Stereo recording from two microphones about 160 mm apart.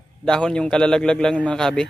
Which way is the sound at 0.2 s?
5° left (ahead or behind).